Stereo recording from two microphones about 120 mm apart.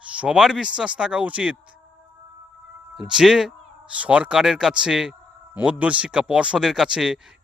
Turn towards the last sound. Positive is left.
turn(degrees=-5)  # may be behind; listen again after turning